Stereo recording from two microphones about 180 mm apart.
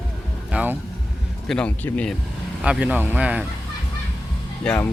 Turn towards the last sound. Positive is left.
turn(degrees=5)  # may be behind; listen again after turning